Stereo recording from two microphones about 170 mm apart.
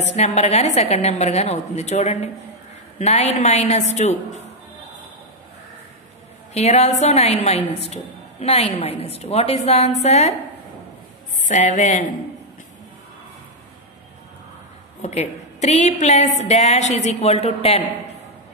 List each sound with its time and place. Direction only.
0.0 s a woman's voice: 40° left (ahead or behind)
6.5 s a woman's voice: 40° left (ahead or behind)
11.4 s a woman's voice: 45° left (ahead or behind)
15.0 s a woman's voice: 40° left (ahead or behind)